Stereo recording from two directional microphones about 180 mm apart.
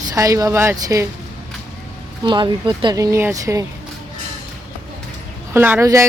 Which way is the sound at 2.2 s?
25° right (ahead or behind).